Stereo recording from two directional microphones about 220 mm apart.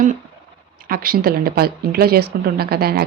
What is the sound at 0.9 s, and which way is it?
Speech, 40° right (ahead or behind).